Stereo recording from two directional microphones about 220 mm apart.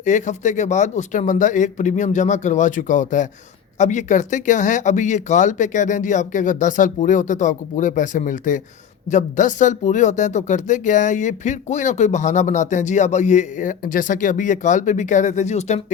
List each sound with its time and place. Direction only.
0.0 s speech: 35° left (ahead or behind)